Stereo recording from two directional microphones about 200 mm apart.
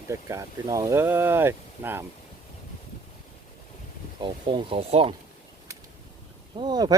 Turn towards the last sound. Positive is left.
turn(degrees=-20)  # may be behind; listen again after turning